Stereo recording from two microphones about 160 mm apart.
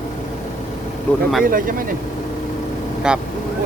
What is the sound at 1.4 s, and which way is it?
Speech, 60° right (ahead or behind).